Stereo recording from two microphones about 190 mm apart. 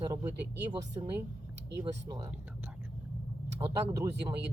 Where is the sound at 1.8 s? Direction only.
25° right (ahead or behind).